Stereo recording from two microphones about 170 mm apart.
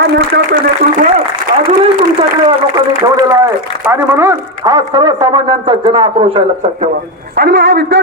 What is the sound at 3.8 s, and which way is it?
Speech, 15° right (ahead or behind).